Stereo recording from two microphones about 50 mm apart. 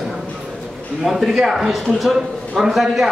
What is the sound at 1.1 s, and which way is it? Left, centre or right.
A man's voice, centre.